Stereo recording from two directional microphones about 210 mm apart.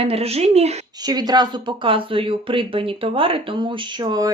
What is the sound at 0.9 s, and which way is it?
Speech, 20° right (ahead or behind).